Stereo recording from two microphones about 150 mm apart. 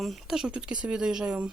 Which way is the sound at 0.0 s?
Centre (ahead or behind).